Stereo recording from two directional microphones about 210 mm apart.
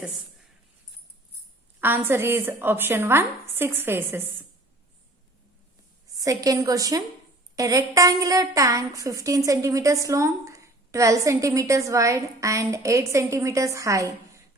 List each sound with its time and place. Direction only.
1.8 s a woman's voice: 10° right (ahead or behind)
6.1 s a woman's voice: 15° right (ahead or behind)